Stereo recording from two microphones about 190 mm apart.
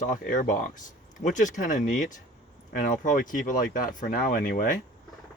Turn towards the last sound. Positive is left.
turn(degrees=45)  # may be behind; listen again after turning